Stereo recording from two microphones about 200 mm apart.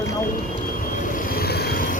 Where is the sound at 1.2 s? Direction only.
50° left (ahead or behind).